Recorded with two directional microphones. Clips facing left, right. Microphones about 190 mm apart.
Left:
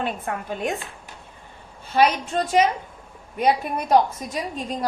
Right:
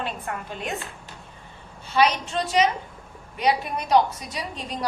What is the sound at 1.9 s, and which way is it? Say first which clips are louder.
A woman's voice: left 2 dB; 50° left (ahead or behind).